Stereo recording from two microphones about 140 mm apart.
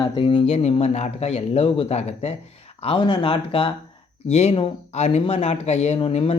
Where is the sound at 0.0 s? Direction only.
35° left (ahead or behind).